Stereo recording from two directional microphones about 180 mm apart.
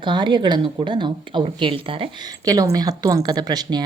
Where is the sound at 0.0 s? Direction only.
25° right (ahead or behind).